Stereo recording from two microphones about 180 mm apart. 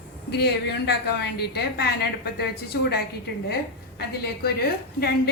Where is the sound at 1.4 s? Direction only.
60° left (ahead or behind).